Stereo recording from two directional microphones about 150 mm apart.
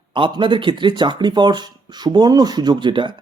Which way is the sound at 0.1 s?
30° right (ahead or behind).